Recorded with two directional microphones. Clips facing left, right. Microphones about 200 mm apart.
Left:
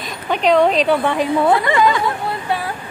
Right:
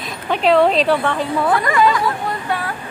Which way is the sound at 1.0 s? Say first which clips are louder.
Left 3 dB; 15° left (ahead or behind).